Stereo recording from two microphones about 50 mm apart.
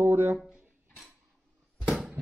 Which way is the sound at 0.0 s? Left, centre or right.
Right.